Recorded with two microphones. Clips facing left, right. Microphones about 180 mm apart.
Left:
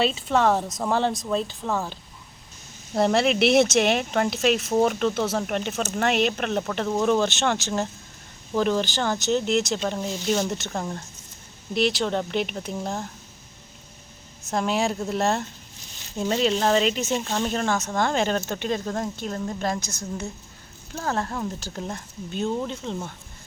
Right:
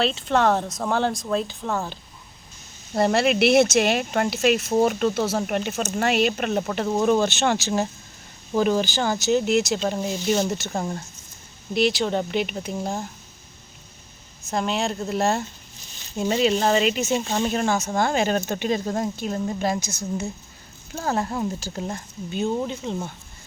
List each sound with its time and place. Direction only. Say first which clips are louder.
0.0 s speech: right 1 dB; 5° left (ahead or behind)
14.5 s speech: left 1 dB; centre (ahead or behind)